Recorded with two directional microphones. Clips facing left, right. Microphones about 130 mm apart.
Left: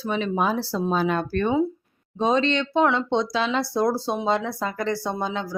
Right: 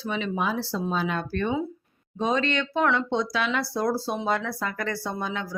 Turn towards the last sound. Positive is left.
turn(degrees=30)  # may be behind; listen again after turning